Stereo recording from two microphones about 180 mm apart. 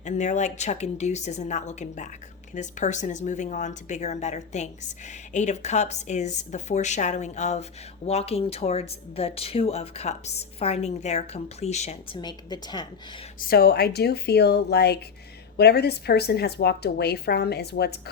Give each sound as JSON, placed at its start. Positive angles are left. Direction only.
{"t": 0.0, "sound": "speech", "side_deg": 40}
{"t": 12.2, "sound": "a woman's voice", "side_deg": 25}
{"t": 13.5, "sound": "a woman's voice", "side_deg": 60}